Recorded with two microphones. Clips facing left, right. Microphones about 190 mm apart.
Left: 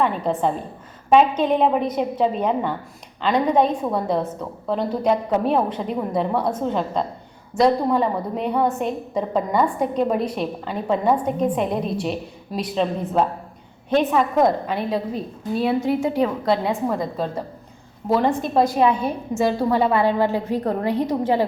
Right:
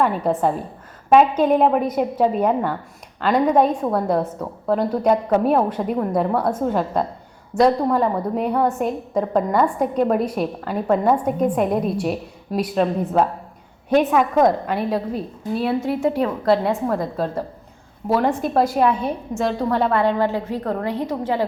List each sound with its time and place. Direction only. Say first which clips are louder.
0.0 s a woman's voice: right 2 dB; 5° right (ahead or behind)
16.2 s a woman's voice: right 2 dB; 5° left (ahead or behind)